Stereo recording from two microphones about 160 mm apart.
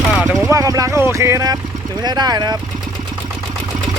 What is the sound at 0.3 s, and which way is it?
Speech, 20° right (ahead or behind).